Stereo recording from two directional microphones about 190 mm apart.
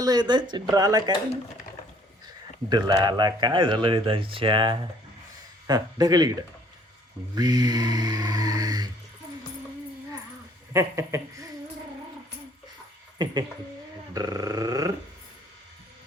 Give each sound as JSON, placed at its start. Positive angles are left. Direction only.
{"t": 0.0, "sound": "speech", "side_deg": -20}
{"t": 2.6, "sound": "speech", "side_deg": -20}
{"t": 7.3, "sound": "speech", "side_deg": -20}
{"t": 10.7, "sound": "speech", "side_deg": -15}
{"t": 14.1, "sound": "speech", "side_deg": -20}